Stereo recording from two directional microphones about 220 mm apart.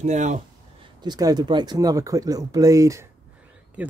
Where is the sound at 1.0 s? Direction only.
20° right (ahead or behind).